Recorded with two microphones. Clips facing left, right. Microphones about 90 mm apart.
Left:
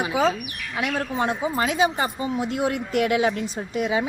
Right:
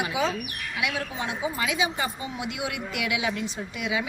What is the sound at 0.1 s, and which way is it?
Speech, 40° left (ahead or behind).